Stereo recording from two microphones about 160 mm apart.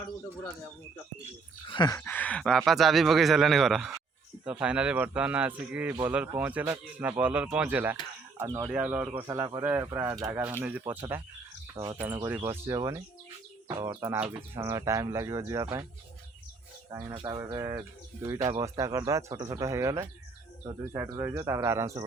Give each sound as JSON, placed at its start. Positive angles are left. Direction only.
{"t": 1.6, "sound": "speech", "side_deg": 30}
{"t": 17.2, "sound": "speech", "side_deg": -30}